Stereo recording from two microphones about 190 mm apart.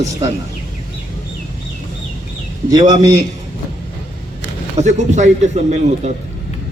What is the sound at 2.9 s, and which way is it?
Speech, 20° right (ahead or behind).